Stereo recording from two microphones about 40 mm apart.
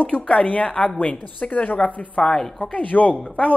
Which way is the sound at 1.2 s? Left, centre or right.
Left.